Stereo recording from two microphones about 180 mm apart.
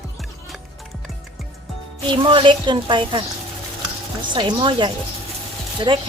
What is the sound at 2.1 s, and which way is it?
A woman's voice, 25° right (ahead or behind).